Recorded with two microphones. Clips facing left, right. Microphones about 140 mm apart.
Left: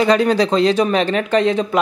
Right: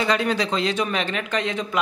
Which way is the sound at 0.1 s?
40° left (ahead or behind).